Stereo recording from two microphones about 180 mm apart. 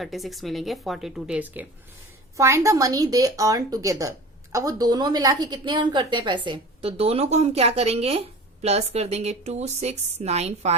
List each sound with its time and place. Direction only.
0.0 s a woman's voice: centre (ahead or behind); by 10.8 s 35° right (ahead or behind)